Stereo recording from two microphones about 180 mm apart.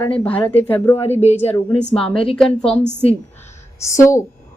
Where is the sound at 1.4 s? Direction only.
10° left (ahead or behind).